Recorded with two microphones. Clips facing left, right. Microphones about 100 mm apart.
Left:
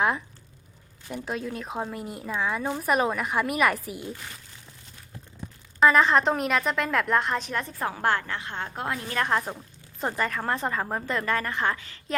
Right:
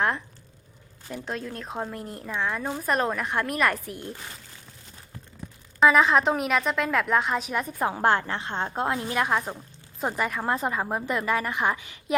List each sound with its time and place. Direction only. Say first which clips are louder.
1.0 s speech: left 1 dB; 5° left (ahead or behind)
5.8 s speech: even; centre (ahead or behind)
7.8 s a woman's voice: right 4 dB; 20° right (ahead or behind)
9.1 s a woman's voice: left 3 dB; 5° right (ahead or behind)